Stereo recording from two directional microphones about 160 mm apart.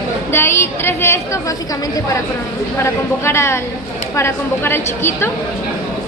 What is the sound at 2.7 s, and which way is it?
A woman's voice, 15° left (ahead or behind).